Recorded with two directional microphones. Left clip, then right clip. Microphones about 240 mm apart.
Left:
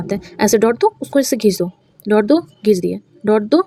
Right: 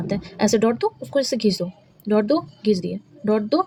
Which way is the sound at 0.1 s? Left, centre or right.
Left.